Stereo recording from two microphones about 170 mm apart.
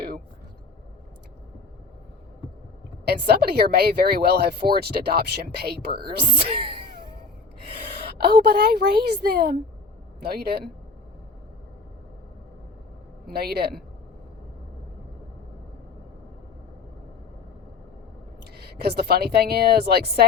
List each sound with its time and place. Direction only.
3.1 s speech: 70° right (ahead or behind)
7.9 s a woman's voice: 65° right (ahead or behind)
13.2 s speech: 65° right (ahead or behind)
18.5 s speech: 70° right (ahead or behind)